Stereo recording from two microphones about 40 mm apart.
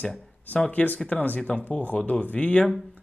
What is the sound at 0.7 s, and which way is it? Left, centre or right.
Speech, left.